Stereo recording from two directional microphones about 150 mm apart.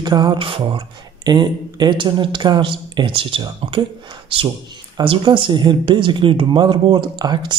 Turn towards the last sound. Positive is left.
turn(degrees=-30)  # may be behind; listen again after turning